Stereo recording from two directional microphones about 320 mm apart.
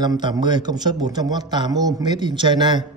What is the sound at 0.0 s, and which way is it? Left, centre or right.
A man's voice, centre.